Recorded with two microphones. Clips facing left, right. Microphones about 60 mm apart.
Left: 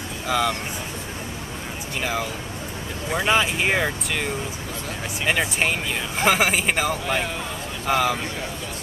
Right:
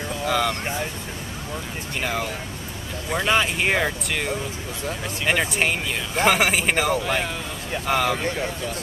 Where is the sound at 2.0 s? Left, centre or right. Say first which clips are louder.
Even; centre.